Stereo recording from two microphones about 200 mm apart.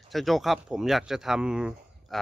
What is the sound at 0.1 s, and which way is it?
Speech, centre (ahead or behind).